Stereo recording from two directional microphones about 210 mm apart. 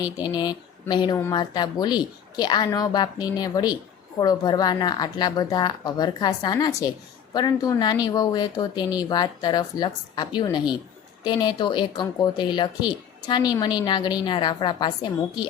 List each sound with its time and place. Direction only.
0.0 s speech: 20° left (ahead or behind)